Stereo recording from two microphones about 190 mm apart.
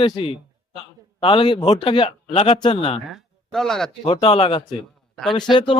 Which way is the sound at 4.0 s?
30° left (ahead or behind).